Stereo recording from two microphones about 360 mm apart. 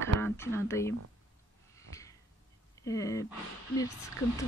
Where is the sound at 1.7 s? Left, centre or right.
Centre.